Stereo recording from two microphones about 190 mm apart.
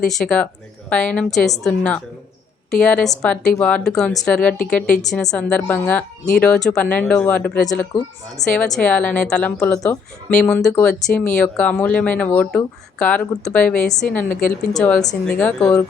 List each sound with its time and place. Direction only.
0.0 s a woman's voice: 5° left (ahead or behind)
9.7 s speech: 15° left (ahead or behind)
10.5 s speech: 5° left (ahead or behind)